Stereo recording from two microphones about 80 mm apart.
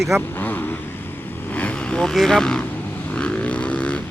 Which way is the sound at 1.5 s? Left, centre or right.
Centre.